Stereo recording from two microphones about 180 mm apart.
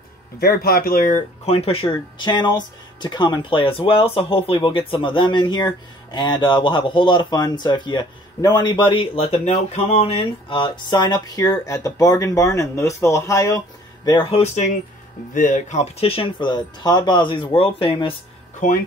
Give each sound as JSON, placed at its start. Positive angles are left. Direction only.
{"t": 0.4, "sound": "speech", "side_deg": 55}
{"t": 1.5, "sound": "speech", "side_deg": 35}
{"t": 14.0, "sound": "speech", "side_deg": 30}
{"t": 18.6, "sound": "speech", "side_deg": 45}